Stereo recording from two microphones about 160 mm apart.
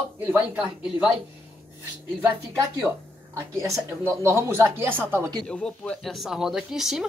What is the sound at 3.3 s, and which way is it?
Speech, 20° right (ahead or behind).